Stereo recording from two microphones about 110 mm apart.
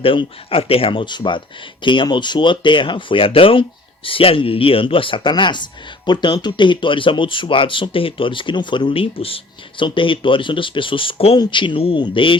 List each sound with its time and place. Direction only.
0.0 s speech: 55° left (ahead or behind)